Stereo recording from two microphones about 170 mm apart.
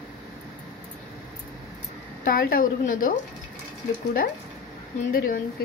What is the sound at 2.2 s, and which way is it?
Speech, 55° left (ahead or behind).